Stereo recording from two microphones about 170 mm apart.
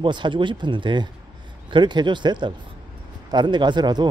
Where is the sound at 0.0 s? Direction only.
30° right (ahead or behind).